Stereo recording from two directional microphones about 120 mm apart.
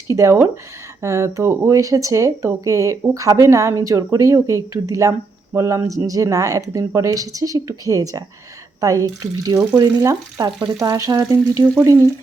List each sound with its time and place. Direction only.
0.2 s speech: 25° right (ahead or behind)